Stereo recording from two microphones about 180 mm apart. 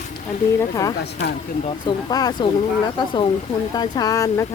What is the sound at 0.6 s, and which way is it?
Speech, 20° left (ahead or behind).